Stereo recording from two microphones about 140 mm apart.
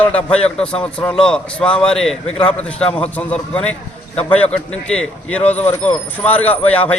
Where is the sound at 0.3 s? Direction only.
5° left (ahead or behind).